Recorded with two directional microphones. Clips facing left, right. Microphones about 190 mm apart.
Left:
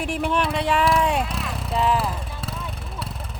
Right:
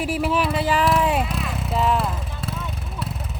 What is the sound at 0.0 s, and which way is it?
Vehicle, 5° right (ahead or behind).